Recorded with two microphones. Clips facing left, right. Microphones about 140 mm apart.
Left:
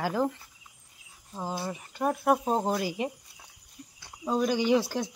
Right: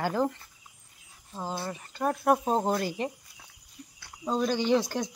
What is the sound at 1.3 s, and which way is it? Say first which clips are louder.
Speech: left 1 dB; 10° left (ahead or behind).